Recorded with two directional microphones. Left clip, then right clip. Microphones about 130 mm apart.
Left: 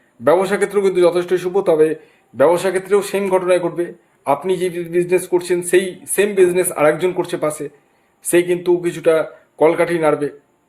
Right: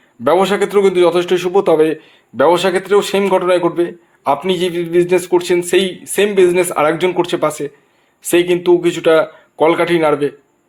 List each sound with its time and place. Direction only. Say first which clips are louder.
0.3 s a man's voice: right 2 dB; 35° right (ahead or behind)